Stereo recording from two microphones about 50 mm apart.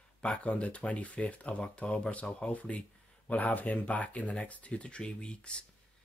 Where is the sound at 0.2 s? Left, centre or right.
Left.